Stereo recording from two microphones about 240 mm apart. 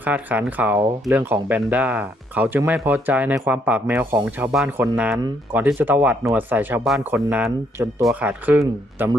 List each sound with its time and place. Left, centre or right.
0.0 s speech: centre